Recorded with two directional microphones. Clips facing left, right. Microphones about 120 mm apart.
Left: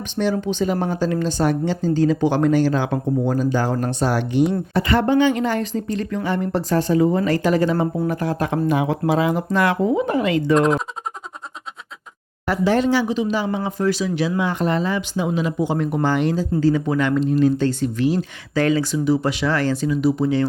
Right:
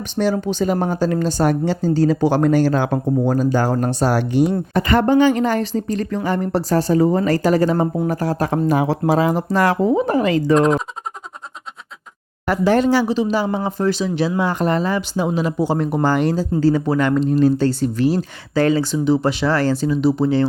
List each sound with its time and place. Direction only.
0.2 s speech: 40° right (ahead or behind)
10.5 s speech: centre (ahead or behind)
12.5 s speech: 45° right (ahead or behind); by 20.5 s 30° right (ahead or behind)